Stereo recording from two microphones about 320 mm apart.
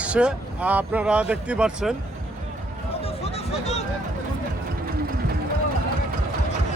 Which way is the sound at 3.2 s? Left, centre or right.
Centre.